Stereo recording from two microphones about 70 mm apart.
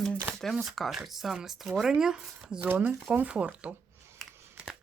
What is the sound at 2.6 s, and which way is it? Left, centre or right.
Speech, right.